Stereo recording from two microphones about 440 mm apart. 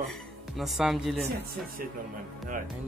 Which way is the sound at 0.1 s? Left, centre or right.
Centre.